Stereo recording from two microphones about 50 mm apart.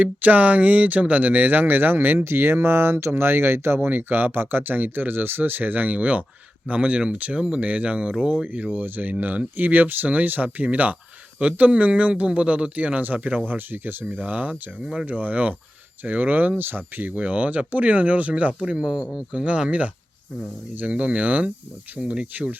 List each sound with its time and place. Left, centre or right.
0.0 s speech: right
3.8 s speech: right
13.5 s speech: right
17.1 s speech: right
20.9 s speech: right